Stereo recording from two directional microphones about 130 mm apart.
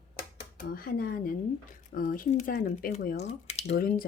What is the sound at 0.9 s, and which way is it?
Speech, 90° left.